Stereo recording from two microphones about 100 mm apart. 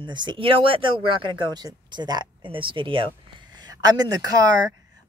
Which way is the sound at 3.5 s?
40° right (ahead or behind).